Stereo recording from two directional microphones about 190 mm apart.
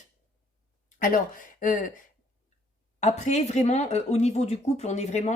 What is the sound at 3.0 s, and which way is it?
Speech, 40° left (ahead or behind).